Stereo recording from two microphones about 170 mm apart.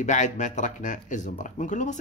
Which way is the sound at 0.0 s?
45° left (ahead or behind).